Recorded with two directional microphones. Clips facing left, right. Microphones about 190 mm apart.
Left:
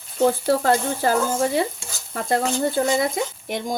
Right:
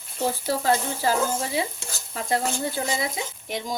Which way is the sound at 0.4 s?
55° left (ahead or behind).